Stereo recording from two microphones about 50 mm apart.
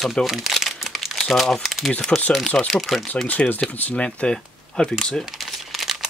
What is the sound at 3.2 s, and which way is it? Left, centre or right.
Speech, left.